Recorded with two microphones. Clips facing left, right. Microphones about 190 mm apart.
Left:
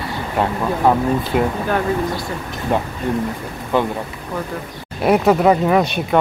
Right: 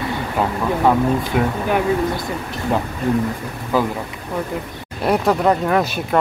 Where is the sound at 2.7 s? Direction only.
Centre (ahead or behind).